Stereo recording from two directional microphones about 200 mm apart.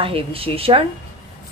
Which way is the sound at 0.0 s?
30° right (ahead or behind).